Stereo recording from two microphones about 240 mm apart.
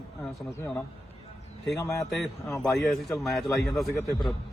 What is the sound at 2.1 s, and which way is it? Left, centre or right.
A man's voice, centre.